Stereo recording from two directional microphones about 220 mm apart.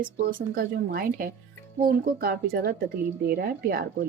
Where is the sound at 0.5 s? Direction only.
45° right (ahead or behind).